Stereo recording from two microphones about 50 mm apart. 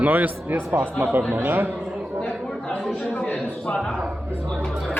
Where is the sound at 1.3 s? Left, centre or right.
Right.